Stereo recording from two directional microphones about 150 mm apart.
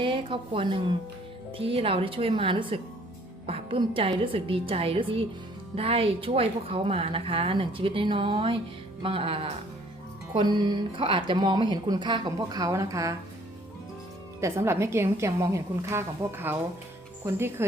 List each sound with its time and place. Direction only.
0.0 s a woman's voice: 35° right (ahead or behind)
14.4 s a woman's voice: 20° right (ahead or behind)